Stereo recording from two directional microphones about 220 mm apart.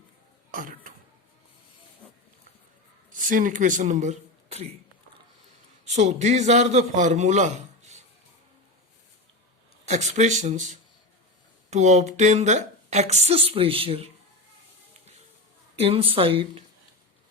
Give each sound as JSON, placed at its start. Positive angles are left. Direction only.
{"t": 0.5, "sound": "a sound", "side_deg": -40}
{"t": 3.1, "sound": "speech", "side_deg": -40}
{"t": 5.8, "sound": "a man's voice", "side_deg": -30}
{"t": 9.8, "sound": "speech", "side_deg": -30}
{"t": 15.7, "sound": "speech", "side_deg": -25}